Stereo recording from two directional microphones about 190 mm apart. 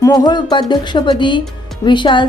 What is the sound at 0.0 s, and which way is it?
A woman's voice, 20° left (ahead or behind).